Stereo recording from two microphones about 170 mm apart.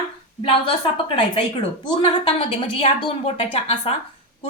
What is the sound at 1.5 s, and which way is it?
A woman's voice, 30° left (ahead or behind).